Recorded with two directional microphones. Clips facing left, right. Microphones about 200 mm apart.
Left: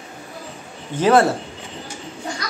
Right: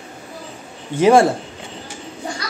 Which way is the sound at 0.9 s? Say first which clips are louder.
Right 3 dB; 10° right (ahead or behind).